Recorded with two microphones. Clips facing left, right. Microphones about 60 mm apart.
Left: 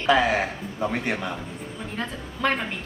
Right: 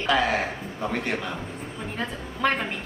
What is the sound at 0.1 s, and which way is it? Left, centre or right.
A woman's voice, centre.